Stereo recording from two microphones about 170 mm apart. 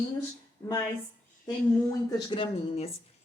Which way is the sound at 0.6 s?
10° left (ahead or behind).